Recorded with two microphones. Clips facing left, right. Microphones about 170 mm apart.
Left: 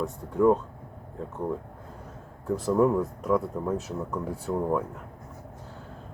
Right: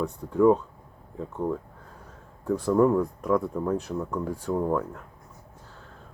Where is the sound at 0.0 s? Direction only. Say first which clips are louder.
Right 2 dB; centre (ahead or behind).